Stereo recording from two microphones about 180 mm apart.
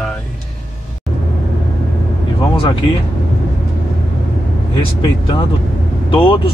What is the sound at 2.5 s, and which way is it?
Speech, 30° left (ahead or behind).